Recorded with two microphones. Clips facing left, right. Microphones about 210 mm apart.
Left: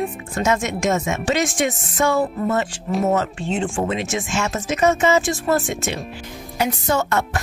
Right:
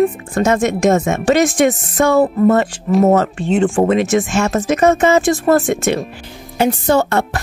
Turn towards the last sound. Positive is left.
turn(degrees=-30)  # may be behind; listen again after turning